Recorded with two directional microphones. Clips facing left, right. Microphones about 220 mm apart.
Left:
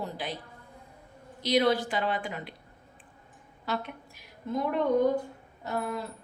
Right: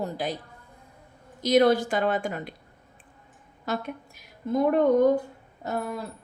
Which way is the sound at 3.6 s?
45° right (ahead or behind).